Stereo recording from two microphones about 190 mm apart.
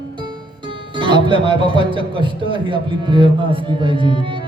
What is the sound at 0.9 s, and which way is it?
Speech, 25° right (ahead or behind).